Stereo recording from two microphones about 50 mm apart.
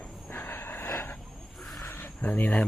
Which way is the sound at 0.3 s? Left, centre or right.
Left.